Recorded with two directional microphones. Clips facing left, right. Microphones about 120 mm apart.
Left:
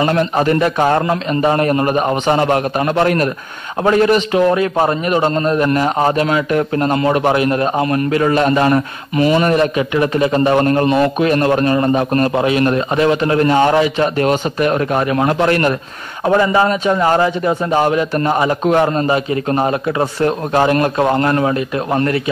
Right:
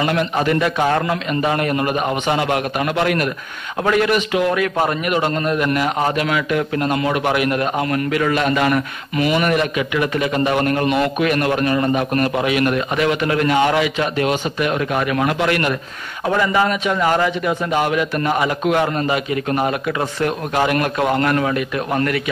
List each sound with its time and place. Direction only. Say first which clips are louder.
0.0 s a man's voice: left 4 dB; 35° left (ahead or behind)